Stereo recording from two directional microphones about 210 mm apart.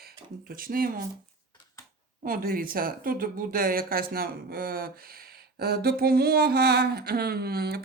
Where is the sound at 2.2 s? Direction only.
45° right (ahead or behind).